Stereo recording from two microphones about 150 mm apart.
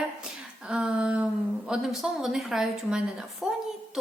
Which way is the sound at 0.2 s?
5° right (ahead or behind).